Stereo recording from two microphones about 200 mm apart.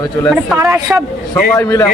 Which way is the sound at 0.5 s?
10° right (ahead or behind).